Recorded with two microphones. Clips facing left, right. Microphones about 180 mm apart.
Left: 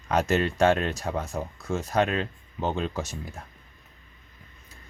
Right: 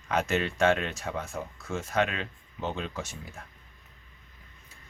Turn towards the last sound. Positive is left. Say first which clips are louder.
# left 5 dB
turn(degrees=40)  # may be behind; listen again after turning